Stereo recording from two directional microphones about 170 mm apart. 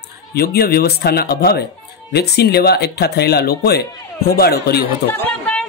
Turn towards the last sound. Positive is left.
turn(degrees=5)  # may be behind; listen again after turning